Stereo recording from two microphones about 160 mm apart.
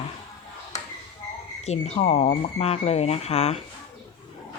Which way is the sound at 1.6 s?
45° left (ahead or behind).